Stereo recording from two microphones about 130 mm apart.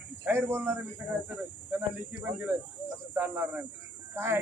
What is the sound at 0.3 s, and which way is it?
Speech, 20° right (ahead or behind).